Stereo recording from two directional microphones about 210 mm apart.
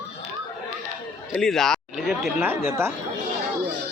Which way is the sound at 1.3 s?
Centre (ahead or behind).